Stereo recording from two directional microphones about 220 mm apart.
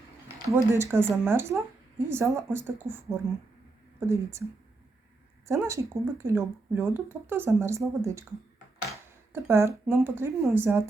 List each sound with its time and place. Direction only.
0.5 s speech: 10° right (ahead or behind)
5.5 s speech: 10° right (ahead or behind)
9.3 s speech: 10° right (ahead or behind)